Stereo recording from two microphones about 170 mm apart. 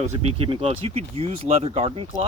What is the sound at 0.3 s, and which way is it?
Speech, 35° right (ahead or behind).